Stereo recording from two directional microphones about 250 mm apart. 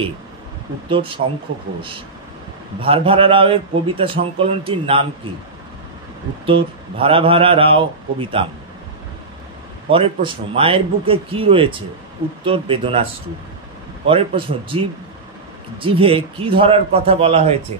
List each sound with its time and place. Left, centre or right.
0.8 s a man's voice: right
2.8 s a man's voice: right
6.4 s a man's voice: right
9.8 s a man's voice: right
14.0 s a man's voice: right